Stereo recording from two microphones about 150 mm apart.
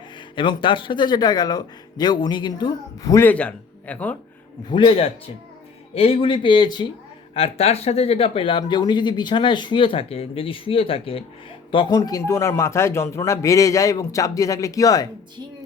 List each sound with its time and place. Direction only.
0.3 s a man's voice: 35° left (ahead or behind); by 4.2 s 10° left (ahead or behind)
4.7 s speech: 35° left (ahead or behind)
7.3 s a man's voice: 40° left (ahead or behind); by 15.0 s 25° left (ahead or behind)